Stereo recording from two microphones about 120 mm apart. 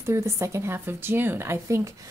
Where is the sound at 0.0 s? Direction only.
25° right (ahead or behind).